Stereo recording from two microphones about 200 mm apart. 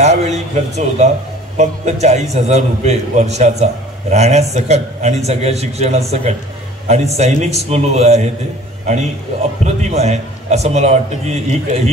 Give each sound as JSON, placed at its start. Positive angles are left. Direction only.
{"t": 0.0, "sound": "a man's voice", "side_deg": -35}